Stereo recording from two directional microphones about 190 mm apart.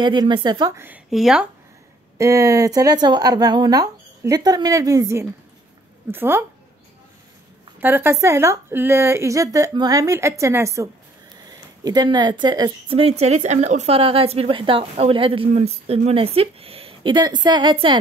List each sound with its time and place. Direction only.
0.0 s speech: 25° right (ahead or behind); by 1.5 s 5° right (ahead or behind)
2.1 s a woman's voice: 15° right (ahead or behind)
7.8 s a woman's voice: 10° right (ahead or behind)
13.2 s a woman's voice: 35° right (ahead or behind)